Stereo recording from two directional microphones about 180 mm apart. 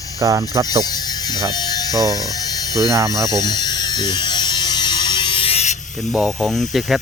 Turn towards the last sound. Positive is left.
turn(degrees=0)  # may be behind; listen again after turning